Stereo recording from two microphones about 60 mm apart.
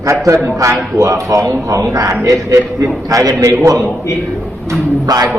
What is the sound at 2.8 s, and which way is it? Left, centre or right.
Speech, right.